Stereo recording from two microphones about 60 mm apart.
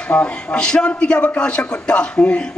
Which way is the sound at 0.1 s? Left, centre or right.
Left.